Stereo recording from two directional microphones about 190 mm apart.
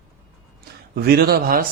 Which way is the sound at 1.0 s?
55° right (ahead or behind).